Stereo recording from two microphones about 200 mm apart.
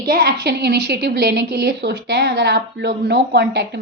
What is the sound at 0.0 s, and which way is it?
A woman's voice, 50° right (ahead or behind).